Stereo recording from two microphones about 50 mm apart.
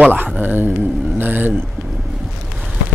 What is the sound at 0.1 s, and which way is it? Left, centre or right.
Speech, right.